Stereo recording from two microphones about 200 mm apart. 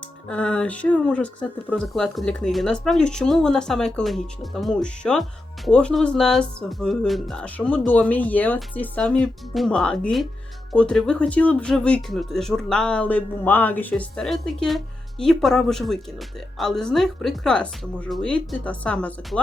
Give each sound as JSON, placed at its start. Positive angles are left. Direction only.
{"t": 0.3, "sound": "speech", "side_deg": 5}